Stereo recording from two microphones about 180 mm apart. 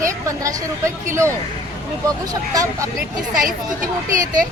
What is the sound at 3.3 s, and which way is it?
Speech, 50° right (ahead or behind).